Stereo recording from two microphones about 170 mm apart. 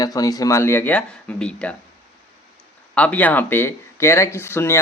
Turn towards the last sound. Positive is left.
turn(degrees=15)  # may be behind; listen again after turning